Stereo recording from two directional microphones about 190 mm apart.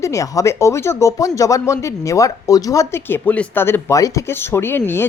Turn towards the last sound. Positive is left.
turn(degrees=10)  # may be behind; listen again after turning